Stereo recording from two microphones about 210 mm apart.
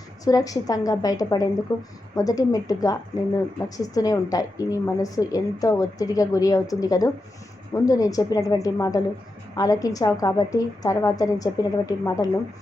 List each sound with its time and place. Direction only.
0.3 s a woman's voice: 15° left (ahead or behind)